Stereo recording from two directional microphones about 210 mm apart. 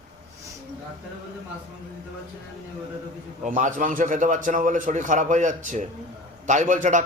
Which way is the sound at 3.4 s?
40° right (ahead or behind).